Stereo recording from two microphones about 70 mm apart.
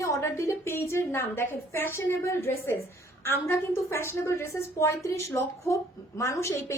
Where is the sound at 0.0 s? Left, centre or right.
Left.